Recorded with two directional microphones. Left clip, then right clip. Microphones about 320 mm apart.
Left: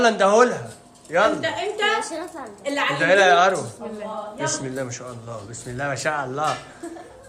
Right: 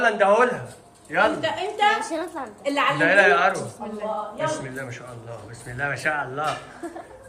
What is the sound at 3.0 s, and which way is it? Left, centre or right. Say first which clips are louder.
Speech: left 2 dB; centre.